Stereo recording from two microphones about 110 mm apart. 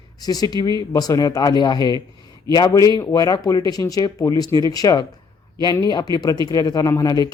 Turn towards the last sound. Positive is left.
turn(degrees=35)  # may be behind; listen again after turning